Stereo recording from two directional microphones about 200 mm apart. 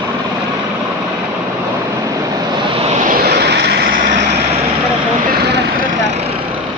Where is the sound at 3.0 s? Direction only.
45° right (ahead or behind).